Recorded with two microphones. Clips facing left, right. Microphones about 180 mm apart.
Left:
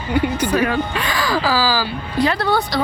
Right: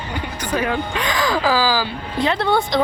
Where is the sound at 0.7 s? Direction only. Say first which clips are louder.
Left 1 dB; 15° right (ahead or behind).